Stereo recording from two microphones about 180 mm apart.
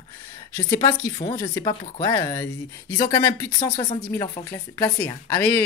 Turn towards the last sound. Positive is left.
turn(degrees=10)  # may be behind; listen again after turning